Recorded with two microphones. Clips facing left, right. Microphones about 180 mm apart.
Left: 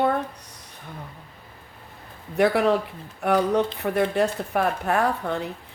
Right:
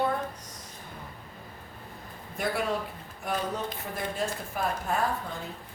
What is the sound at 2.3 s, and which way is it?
Speech, 65° left (ahead or behind).